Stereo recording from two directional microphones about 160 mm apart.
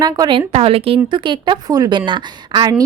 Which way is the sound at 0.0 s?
30° right (ahead or behind).